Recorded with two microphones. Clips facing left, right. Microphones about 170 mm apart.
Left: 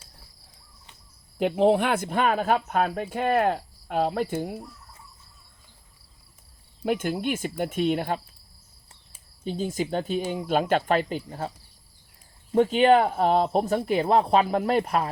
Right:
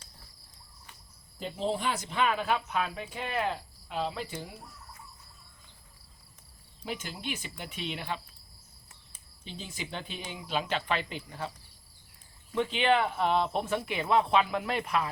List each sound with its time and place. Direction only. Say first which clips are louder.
1.4 s speech: left 12 dB; 70° left (ahead or behind); by 4.6 s 50° left (ahead or behind)
6.8 s speech: left 12 dB; 55° left (ahead or behind)
9.4 s speech: left 14 dB; 45° left (ahead or behind)
12.5 s speech: left 8 dB; 45° left (ahead or behind)